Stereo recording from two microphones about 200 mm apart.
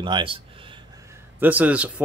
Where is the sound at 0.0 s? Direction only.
25° right (ahead or behind).